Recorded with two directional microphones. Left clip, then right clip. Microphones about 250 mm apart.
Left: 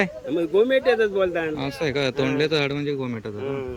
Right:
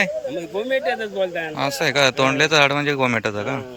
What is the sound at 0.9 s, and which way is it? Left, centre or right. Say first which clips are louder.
Speech: left 4 dB; left.